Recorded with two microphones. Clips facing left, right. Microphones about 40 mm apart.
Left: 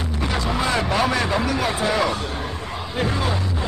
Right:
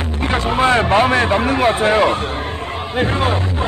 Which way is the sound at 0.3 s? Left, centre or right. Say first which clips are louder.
Right 8 dB; right.